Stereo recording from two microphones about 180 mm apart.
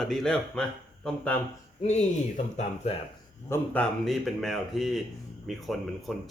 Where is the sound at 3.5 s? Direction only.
5° left (ahead or behind).